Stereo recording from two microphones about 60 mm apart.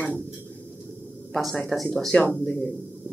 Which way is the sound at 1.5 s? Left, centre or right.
Centre.